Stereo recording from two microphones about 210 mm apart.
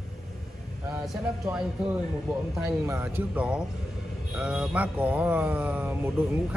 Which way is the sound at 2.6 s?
10° right (ahead or behind).